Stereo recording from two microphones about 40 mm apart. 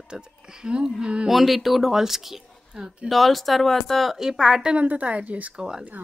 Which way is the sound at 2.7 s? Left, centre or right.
Right.